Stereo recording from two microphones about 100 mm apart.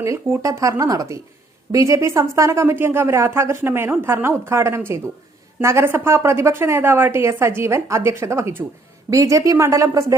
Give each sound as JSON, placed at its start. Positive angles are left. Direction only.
{"t": 0.0, "sound": "a woman's voice", "side_deg": -30}